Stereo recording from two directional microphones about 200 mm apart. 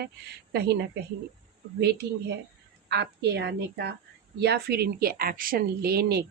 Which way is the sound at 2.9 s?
55° right (ahead or behind).